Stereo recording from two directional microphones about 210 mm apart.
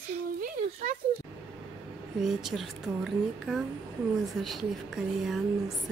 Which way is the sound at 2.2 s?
Centre (ahead or behind).